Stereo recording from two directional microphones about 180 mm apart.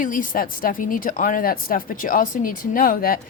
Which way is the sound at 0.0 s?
50° left (ahead or behind).